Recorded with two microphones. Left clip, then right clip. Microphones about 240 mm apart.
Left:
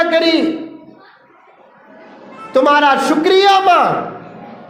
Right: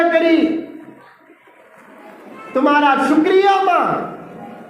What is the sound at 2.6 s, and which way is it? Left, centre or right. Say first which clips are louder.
Speech: left 3 dB; left.